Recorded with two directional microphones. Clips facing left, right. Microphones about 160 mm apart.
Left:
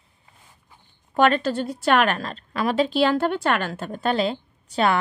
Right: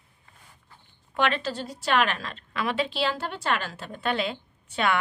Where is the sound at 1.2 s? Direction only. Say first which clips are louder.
Left 7 dB; 50° left (ahead or behind).